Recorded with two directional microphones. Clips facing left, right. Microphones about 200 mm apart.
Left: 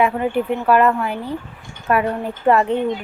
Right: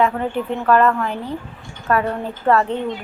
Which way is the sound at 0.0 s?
10° left (ahead or behind).